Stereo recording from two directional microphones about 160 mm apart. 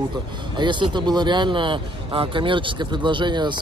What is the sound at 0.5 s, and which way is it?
Speech, 30° right (ahead or behind).